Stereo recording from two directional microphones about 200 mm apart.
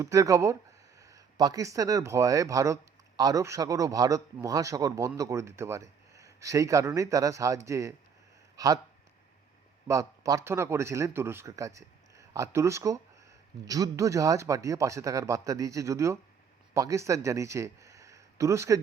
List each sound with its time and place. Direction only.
0.0 s speech: 15° right (ahead or behind)
9.8 s speech: 15° right (ahead or behind)